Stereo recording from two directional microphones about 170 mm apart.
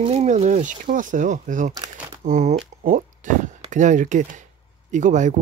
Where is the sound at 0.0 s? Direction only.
35° right (ahead or behind).